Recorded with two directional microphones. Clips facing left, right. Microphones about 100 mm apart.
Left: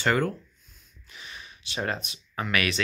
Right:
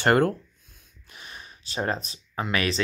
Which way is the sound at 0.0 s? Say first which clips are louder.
Right 5 dB; 55° right (ahead or behind).